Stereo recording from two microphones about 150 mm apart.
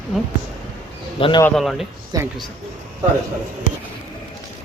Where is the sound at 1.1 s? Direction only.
35° left (ahead or behind).